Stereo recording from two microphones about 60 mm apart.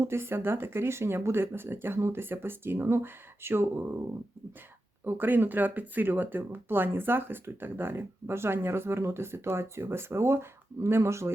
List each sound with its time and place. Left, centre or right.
0.0 s speech: right
5.0 s speech: right